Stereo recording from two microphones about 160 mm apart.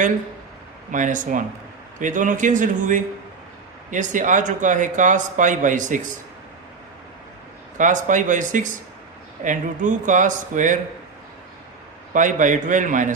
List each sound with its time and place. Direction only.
0.9 s a man's voice: 55° right (ahead or behind)
7.8 s a man's voice: 50° right (ahead or behind)
12.1 s a man's voice: 55° right (ahead or behind)